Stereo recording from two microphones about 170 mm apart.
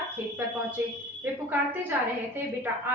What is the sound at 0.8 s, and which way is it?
A woman's voice, 10° right (ahead or behind).